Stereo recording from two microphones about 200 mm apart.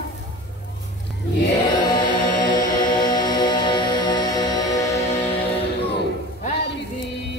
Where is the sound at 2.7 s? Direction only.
20° left (ahead or behind).